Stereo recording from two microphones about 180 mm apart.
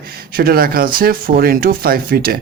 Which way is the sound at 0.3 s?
55° right (ahead or behind).